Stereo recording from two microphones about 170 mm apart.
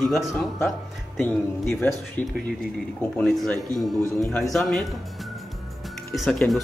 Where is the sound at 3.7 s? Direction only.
20° right (ahead or behind).